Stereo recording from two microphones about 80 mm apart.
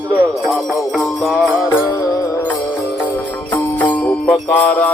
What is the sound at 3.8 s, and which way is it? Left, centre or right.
Music, left.